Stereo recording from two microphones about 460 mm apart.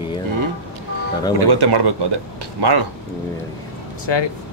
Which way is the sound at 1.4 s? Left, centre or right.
Right.